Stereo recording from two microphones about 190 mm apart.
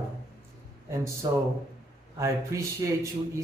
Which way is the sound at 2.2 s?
15° right (ahead or behind).